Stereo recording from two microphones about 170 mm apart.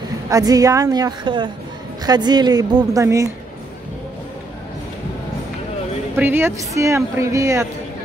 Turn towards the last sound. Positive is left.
turn(degrees=-20)  # may be behind; listen again after turning